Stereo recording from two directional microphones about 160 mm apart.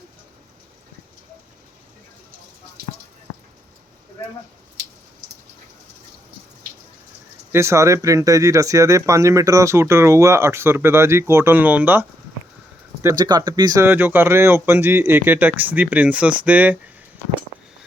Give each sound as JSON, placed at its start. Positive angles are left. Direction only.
{"t": 7.5, "sound": "speech", "side_deg": -15}
{"t": 13.0, "sound": "speech", "side_deg": -20}